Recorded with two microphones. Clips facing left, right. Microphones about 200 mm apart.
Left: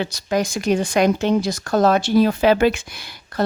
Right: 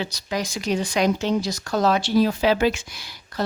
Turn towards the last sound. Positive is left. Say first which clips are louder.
# left 4 dB
turn(degrees=55)  # may be behind; listen again after turning